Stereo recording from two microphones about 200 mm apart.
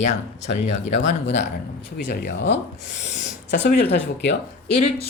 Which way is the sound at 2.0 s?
60° left (ahead or behind).